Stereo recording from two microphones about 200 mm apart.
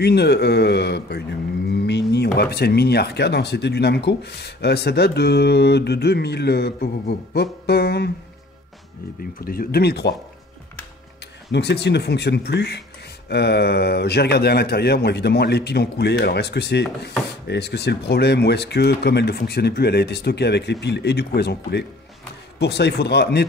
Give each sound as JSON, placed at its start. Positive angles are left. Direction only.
{"t": 0.0, "sound": "speech", "side_deg": 55}
{"t": 9.4, "sound": "speech", "side_deg": 50}
{"t": 11.5, "sound": "speech", "side_deg": 55}